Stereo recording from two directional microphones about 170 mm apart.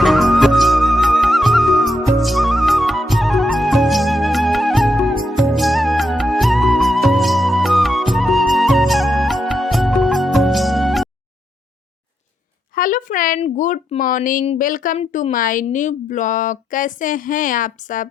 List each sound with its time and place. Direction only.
0.0 s music: centre (ahead or behind)
12.7 s a sound: 55° left (ahead or behind)
14.6 s a woman's voice: 55° left (ahead or behind)